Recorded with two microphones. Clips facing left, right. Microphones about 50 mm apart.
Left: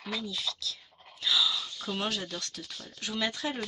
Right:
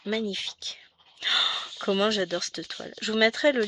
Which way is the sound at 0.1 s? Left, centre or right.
Right.